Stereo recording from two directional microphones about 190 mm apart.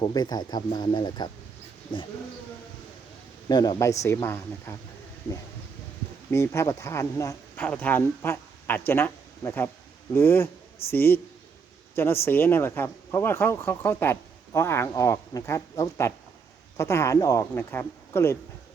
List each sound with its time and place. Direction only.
0.0 s speech: 20° left (ahead or behind)
3.5 s speech: 20° left (ahead or behind)
6.3 s speech: 15° left (ahead or behind)